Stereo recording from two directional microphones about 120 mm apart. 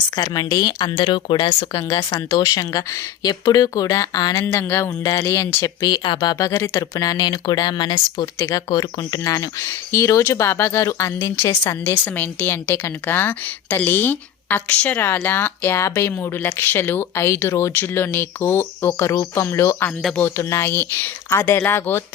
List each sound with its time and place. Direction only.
0.2 s a woman's voice: 30° left (ahead or behind)
4.6 s a woman's voice: 20° left (ahead or behind); by 6.1 s 40° left (ahead or behind)
6.1 s a woman's voice: 30° left (ahead or behind)
8.4 s a woman's voice: 25° left (ahead or behind)
12.0 s a woman's voice: 15° left (ahead or behind)